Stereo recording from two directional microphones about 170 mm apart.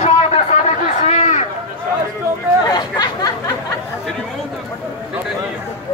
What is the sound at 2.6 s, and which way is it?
Chatter, 25° left (ahead or behind).